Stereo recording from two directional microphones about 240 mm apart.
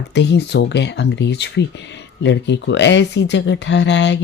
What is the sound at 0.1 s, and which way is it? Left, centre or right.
Speech, left.